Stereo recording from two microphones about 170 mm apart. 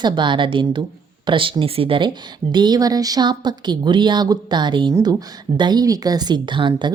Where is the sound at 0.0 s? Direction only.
30° right (ahead or behind).